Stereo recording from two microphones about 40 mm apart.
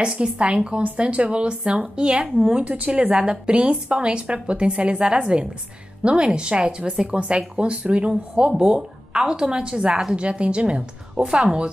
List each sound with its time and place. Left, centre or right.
0.0 s speech: right
2.6 s a woman's voice: right
3.2 s speech: right
11.2 s a woman's voice: centre